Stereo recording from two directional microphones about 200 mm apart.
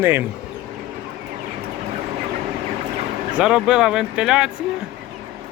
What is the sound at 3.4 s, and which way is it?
Speech, 5° right (ahead or behind).